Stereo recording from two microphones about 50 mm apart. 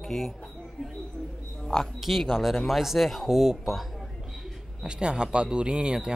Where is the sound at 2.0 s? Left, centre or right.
Centre.